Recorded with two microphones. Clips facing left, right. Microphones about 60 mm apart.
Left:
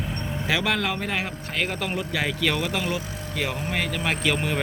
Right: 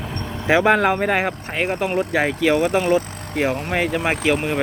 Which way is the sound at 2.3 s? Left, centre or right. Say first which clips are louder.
Right 8 dB; centre.